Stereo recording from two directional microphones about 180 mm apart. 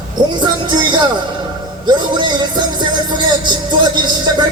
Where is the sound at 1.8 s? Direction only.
25° right (ahead or behind).